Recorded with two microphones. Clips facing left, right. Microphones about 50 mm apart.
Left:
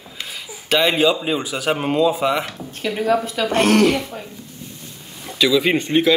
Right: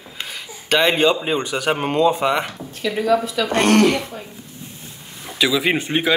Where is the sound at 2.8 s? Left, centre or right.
Left.